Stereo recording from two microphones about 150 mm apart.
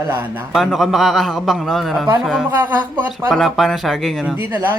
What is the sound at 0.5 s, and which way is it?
Speech, centre (ahead or behind).